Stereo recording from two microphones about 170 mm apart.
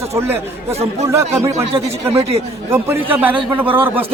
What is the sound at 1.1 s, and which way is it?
Speech, 15° right (ahead or behind).